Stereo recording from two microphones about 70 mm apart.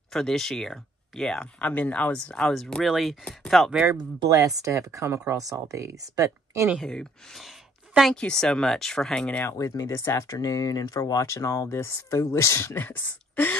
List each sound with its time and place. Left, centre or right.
0.1 s speech: centre
1.4 s speech: left; by 3.7 s centre
4.3 s speech: right
6.8 s speech: centre
9.5 s speech: left
10.2 s speech: left
11.7 s speech: left
12.7 s speech: left